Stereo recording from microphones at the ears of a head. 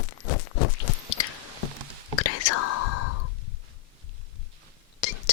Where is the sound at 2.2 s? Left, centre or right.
Left.